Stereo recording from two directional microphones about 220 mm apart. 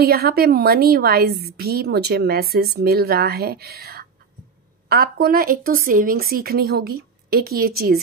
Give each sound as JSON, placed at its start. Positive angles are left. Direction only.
{"t": 0.0, "sound": "a woman's voice", "side_deg": -45}